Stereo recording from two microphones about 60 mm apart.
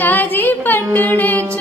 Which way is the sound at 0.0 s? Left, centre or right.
Left.